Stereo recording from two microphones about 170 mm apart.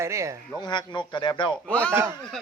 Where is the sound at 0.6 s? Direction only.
25° left (ahead or behind).